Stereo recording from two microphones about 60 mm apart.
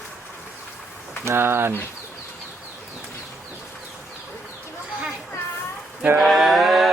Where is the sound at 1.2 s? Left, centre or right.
Right.